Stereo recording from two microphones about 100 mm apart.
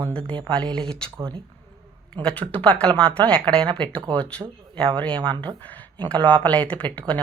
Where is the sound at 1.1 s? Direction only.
60° right (ahead or behind).